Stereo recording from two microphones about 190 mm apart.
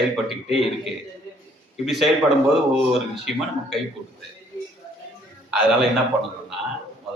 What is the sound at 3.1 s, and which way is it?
Speech, centre (ahead or behind).